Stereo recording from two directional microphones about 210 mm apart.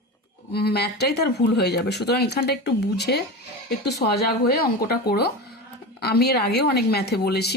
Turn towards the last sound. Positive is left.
turn(degrees=50)  # may be behind; listen again after turning